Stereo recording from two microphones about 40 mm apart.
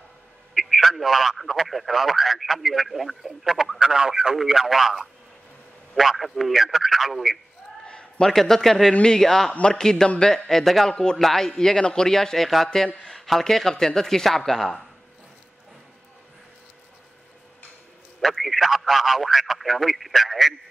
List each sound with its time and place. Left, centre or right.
0.6 s speech: centre
3.8 s speech: centre
4.4 s speech: centre
7.8 s a sound: left
8.2 s speech: centre
9.5 s a man's voice: left
10.5 s speech: centre
18.2 s speech: centre